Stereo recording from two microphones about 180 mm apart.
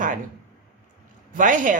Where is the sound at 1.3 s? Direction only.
45° right (ahead or behind).